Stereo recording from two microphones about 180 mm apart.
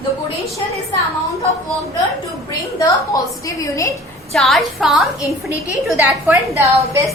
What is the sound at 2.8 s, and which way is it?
A woman's voice, 20° left (ahead or behind).